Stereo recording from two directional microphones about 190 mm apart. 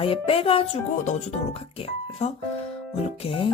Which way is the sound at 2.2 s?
35° left (ahead or behind).